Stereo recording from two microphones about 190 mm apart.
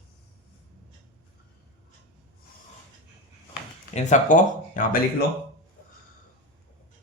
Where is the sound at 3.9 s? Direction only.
40° left (ahead or behind).